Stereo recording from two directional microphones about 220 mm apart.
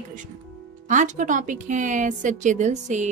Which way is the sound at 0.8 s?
35° right (ahead or behind).